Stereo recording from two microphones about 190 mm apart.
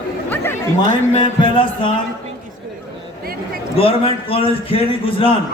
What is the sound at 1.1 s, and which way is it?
Speech, 25° left (ahead or behind).